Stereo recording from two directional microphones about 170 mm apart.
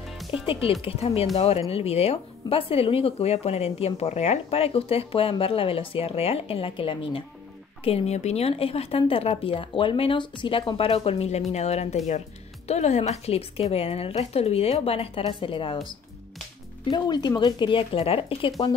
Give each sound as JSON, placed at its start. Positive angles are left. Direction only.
{"t": 0.3, "sound": "speech", "side_deg": 30}
{"t": 16.9, "sound": "speech", "side_deg": 25}